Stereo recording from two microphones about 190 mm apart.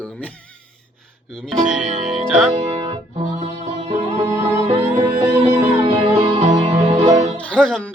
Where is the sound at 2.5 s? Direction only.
30° right (ahead or behind).